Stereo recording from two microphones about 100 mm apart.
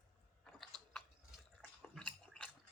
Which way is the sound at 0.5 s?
Centre (ahead or behind).